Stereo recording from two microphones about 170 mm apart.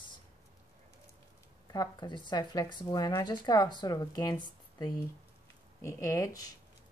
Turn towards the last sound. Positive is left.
turn(degrees=20)  # may be behind; listen again after turning